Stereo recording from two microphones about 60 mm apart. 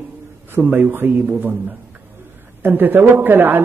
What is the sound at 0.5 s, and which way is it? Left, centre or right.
A man's voice, right.